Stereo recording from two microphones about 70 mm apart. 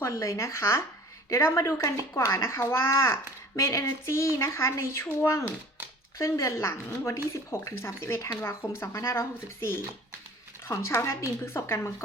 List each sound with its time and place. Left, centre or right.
0.0 s a child's voice: left
3.5 s a child's voice: left